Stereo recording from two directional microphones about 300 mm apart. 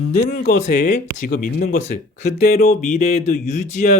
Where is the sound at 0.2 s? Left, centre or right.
Left.